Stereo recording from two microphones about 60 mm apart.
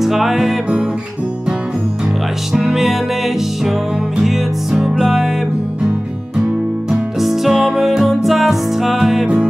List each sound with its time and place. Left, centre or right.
0.0 s music: centre
2.5 s music: centre
4.2 s music: centre
6.9 s music: centre